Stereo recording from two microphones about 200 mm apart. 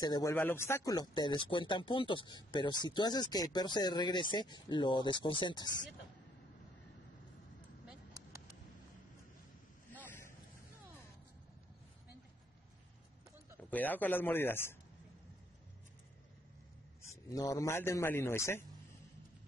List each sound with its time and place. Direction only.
0.0 s speech: 20° left (ahead or behind)
13.7 s a man's voice: 10° left (ahead or behind)
17.3 s a man's voice: 15° left (ahead or behind)